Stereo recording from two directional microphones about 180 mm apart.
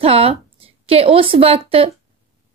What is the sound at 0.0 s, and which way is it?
A woman's voice, 35° right (ahead or behind).